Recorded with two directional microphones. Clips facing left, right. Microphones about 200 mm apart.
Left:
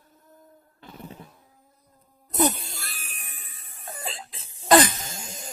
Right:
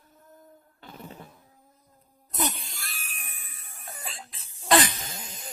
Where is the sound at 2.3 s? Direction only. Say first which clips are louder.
Left 8 dB; 35° left (ahead or behind).